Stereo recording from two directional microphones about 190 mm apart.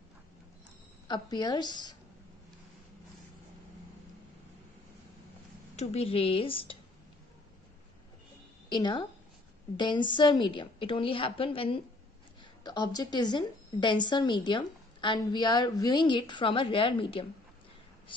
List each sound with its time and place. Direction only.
1.0 s a woman's voice: 25° left (ahead or behind)
5.8 s a woman's voice: 30° left (ahead or behind)
8.6 s a woman's voice: 25° left (ahead or behind)